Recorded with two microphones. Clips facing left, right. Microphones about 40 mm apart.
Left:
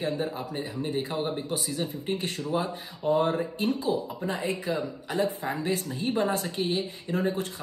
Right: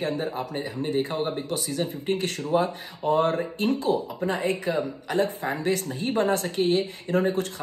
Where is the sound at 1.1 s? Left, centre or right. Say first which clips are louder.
Right 2 dB; centre.